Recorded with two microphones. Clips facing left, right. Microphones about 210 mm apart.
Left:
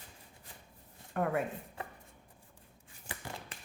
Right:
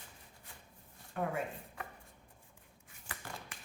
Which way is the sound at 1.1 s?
60° left (ahead or behind).